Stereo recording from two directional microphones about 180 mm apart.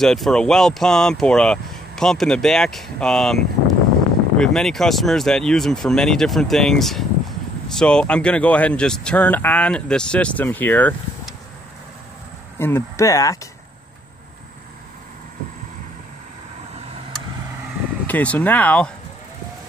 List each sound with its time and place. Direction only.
0.0 s speech: centre (ahead or behind)
12.5 s speech: 15° left (ahead or behind)
18.0 s speech: 10° left (ahead or behind)